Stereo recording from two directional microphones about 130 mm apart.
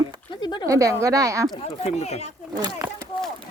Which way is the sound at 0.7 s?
25° right (ahead or behind).